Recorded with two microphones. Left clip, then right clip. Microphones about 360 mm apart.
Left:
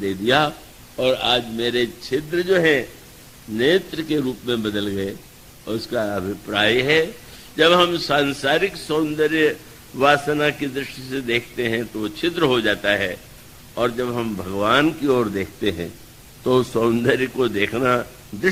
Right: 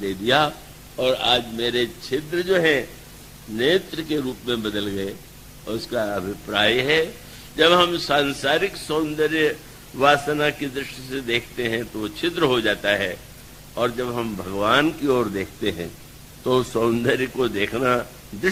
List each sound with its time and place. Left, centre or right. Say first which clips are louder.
0.0 s a man's voice: left 1 dB; right